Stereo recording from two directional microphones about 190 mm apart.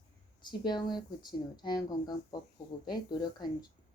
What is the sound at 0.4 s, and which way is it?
Speech, 20° left (ahead or behind).